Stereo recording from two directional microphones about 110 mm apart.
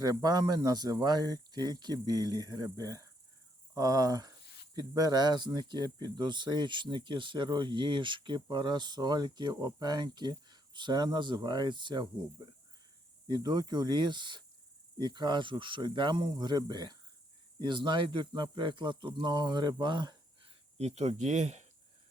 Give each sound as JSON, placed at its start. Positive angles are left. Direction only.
{"t": 0.0, "sound": "speech", "side_deg": -35}
{"t": 13.2, "sound": "speech", "side_deg": -40}